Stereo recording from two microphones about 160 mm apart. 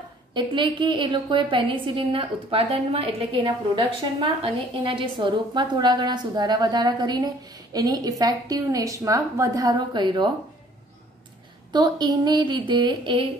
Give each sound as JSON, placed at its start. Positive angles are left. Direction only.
{"t": 0.3, "sound": "a woman's voice", "side_deg": -30}
{"t": 11.7, "sound": "a woman's voice", "side_deg": -25}